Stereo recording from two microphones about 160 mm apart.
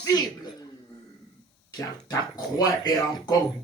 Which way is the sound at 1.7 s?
20° left (ahead or behind).